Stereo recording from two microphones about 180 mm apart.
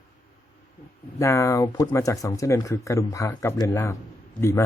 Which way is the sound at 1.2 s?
15° left (ahead or behind).